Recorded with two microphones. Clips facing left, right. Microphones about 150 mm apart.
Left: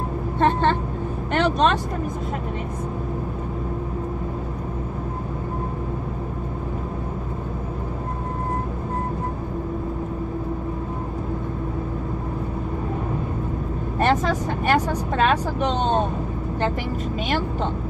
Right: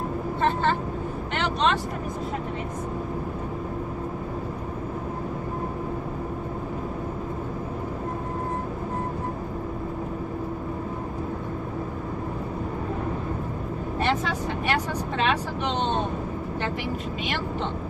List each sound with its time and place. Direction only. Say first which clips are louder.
1.3 s speech: left 5 dB; 45° left (ahead or behind)
13.9 s speech: left 6 dB; 45° left (ahead or behind)